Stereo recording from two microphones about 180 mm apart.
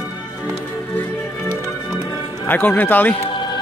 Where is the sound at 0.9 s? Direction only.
10° left (ahead or behind).